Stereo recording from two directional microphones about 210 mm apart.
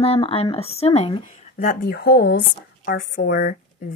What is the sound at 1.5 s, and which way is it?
Speech, 45° left (ahead or behind).